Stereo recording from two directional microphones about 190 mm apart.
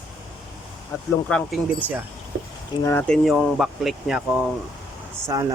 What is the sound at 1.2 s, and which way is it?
Speech, 5° left (ahead or behind).